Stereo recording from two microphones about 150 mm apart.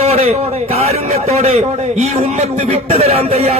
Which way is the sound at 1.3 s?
50° right (ahead or behind).